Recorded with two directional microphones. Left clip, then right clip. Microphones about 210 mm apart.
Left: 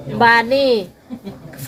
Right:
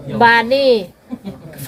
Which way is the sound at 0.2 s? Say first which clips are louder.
Right 1 dB; 10° left (ahead or behind).